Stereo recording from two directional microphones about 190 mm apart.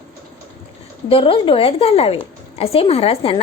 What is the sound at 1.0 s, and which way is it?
Speech, 30° left (ahead or behind).